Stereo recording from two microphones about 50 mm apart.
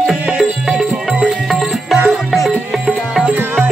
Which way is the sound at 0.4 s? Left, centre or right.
Centre.